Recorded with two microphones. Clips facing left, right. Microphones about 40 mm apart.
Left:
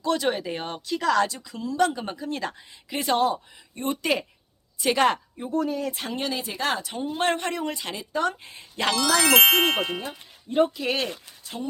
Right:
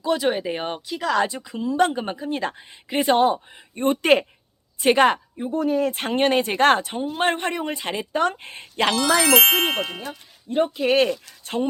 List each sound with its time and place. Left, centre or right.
0.0 s speech: centre
0.9 s speech: centre
1.2 s speech: right
5.5 s speech: right
5.7 s speech: right
6.8 s speech: right
8.1 s speech: right
8.7 s speech: right
9.2 s speech: centre
10.8 s speech: right